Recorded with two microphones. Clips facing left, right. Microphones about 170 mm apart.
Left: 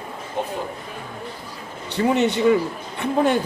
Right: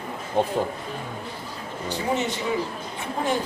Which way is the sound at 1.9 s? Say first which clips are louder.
Left 7 dB; 65° left (ahead or behind).